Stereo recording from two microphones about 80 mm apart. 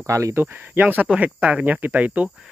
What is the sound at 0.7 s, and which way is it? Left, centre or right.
Speech, centre.